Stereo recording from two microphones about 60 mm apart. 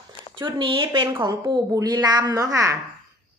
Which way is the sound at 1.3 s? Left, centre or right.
Right.